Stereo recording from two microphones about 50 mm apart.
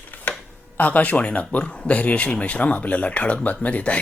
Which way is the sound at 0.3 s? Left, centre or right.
Left.